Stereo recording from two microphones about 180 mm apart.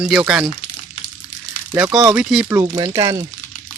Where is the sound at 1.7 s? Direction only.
10° right (ahead or behind).